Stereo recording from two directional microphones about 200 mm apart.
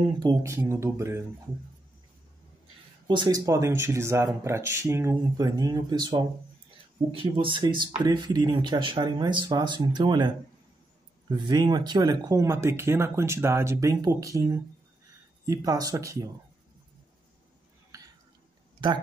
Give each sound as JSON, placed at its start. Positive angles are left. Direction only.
{"t": 0.0, "sound": "speech", "side_deg": -20}
{"t": 3.1, "sound": "speech", "side_deg": -20}
{"t": 17.9, "sound": "a sound", "side_deg": -15}